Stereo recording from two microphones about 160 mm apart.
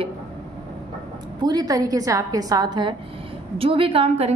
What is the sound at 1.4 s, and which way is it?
A woman's voice, 25° right (ahead or behind).